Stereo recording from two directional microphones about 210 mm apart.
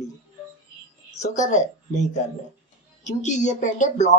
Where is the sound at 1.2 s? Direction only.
35° left (ahead or behind).